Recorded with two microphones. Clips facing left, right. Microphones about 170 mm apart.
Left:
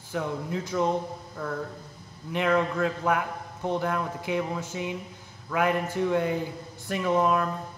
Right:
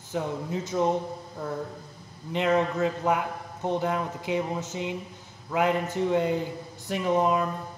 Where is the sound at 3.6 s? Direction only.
15° right (ahead or behind).